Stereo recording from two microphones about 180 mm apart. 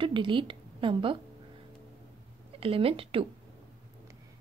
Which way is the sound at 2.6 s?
30° right (ahead or behind).